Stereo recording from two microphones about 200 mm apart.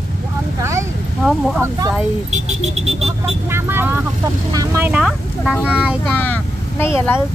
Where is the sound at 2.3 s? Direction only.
30° right (ahead or behind).